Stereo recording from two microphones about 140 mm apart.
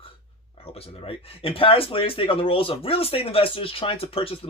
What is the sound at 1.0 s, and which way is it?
Speech, 40° left (ahead or behind).